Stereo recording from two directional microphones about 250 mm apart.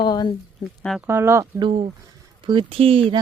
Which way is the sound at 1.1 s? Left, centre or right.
Centre.